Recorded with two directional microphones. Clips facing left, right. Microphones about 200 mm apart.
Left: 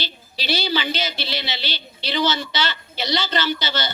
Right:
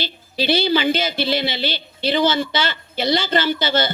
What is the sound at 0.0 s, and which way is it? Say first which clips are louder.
A woman's voice: right 9 dB; 50° right (ahead or behind).